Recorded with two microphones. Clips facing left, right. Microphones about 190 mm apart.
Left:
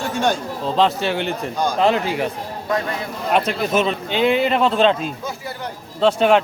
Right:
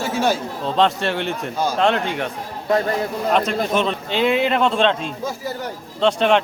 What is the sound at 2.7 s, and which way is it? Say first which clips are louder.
Speech: right 4 dB; 30° right (ahead or behind).